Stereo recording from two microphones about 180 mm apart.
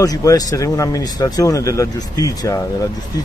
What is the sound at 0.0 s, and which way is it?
Speech, 20° left (ahead or behind).